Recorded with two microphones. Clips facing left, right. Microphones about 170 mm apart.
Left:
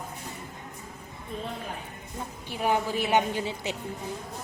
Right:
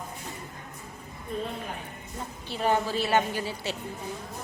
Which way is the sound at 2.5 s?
10° left (ahead or behind).